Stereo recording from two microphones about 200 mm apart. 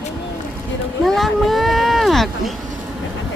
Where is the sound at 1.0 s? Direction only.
Centre (ahead or behind).